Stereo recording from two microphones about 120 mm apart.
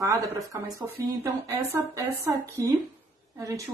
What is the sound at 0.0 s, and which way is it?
Speech, 30° right (ahead or behind).